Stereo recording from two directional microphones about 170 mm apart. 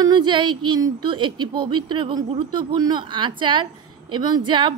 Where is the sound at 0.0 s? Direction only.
25° right (ahead or behind).